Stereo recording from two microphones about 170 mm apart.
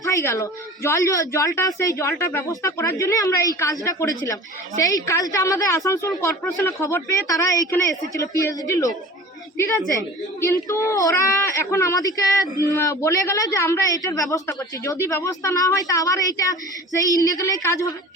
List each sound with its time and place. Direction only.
0.0 s speech: 15° left (ahead or behind)
10.4 s a woman's voice: 15° left (ahead or behind)